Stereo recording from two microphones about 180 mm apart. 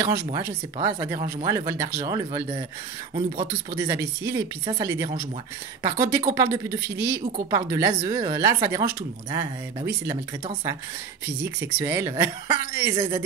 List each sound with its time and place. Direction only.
0.0 s a woman's voice: 15° right (ahead or behind)
11.4 s a woman's voice: 15° right (ahead or behind)
12.9 s speech: 30° right (ahead or behind)